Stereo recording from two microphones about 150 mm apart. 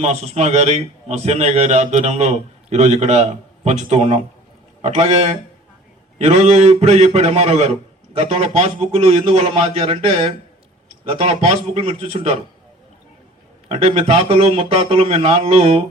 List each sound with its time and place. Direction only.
0.0 s a man's voice: 45° right (ahead or behind)
13.7 s a man's voice: 40° right (ahead or behind)